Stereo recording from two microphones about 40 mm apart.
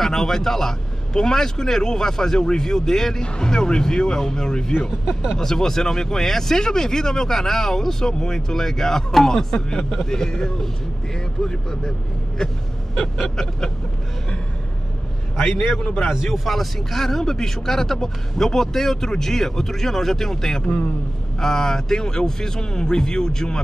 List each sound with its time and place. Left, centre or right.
0.0 s speech: centre
13.2 s speech: centre
16.1 s speech: centre
20.6 s a man's voice: left
21.4 s speech: centre